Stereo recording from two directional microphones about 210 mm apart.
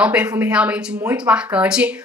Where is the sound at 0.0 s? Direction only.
5° right (ahead or behind).